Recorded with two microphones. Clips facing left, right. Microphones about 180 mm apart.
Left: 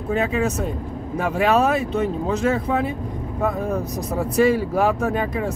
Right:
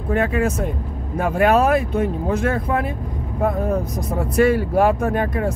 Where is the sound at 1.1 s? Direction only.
50° right (ahead or behind).